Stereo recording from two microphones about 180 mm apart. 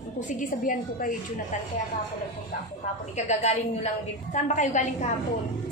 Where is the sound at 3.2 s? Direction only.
40° left (ahead or behind).